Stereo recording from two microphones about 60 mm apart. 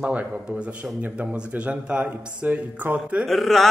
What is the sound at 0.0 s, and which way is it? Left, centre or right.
Speech, centre.